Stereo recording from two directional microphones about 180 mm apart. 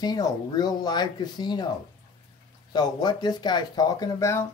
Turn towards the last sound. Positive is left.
turn(degrees=15)  # may be behind; listen again after turning